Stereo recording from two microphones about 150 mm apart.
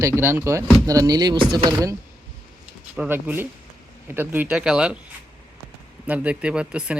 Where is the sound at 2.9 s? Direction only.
10° right (ahead or behind).